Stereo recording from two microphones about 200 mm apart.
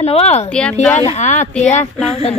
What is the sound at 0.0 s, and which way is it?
Speech, 30° left (ahead or behind).